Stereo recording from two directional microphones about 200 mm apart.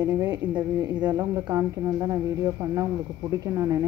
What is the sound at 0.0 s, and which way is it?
Speech, 20° right (ahead or behind).